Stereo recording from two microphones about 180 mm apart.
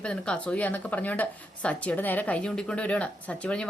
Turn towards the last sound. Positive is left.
turn(degrees=5)  # may be behind; listen again after turning